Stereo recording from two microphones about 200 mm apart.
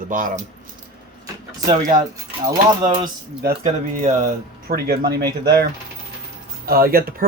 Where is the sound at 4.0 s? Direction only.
40° right (ahead or behind).